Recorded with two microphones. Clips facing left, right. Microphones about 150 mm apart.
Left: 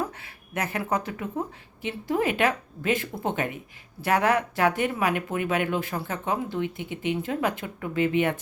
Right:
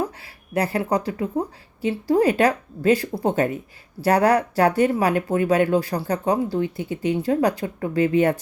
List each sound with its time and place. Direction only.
0.0 s a woman's voice: 35° right (ahead or behind)